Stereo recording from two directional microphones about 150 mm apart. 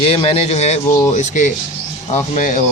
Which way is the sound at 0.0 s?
40° left (ahead or behind).